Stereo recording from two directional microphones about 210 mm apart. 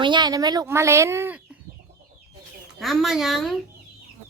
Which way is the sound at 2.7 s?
Centre (ahead or behind).